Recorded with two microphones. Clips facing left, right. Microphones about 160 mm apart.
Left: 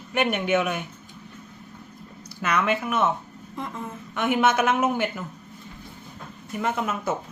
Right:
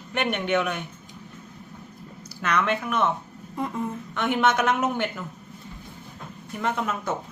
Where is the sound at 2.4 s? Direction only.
5° left (ahead or behind).